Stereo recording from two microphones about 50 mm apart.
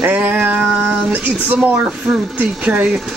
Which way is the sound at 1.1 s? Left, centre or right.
Right.